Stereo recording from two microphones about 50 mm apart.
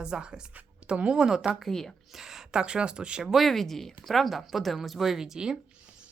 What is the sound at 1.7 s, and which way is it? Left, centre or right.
Speech, centre.